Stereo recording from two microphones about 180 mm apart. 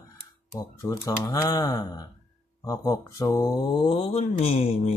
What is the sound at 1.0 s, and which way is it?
Speech, 15° left (ahead or behind).